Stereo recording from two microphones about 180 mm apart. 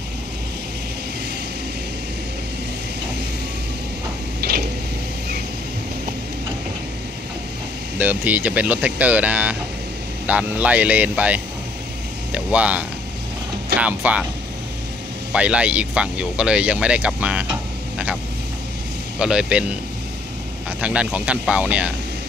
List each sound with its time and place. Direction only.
4.4 s a sound: 60° right (ahead or behind)
8.0 s speech: 10° right (ahead or behind)
15.3 s speech: 5° right (ahead or behind)
19.1 s speech: 5° right (ahead or behind)
20.8 s speech: 5° right (ahead or behind)